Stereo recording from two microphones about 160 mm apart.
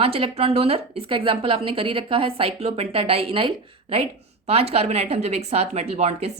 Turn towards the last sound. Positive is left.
turn(degrees=-40)  # may be behind; listen again after turning